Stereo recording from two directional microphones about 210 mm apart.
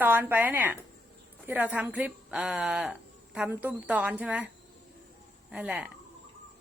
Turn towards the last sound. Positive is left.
turn(degrees=-5)  # may be behind; listen again after turning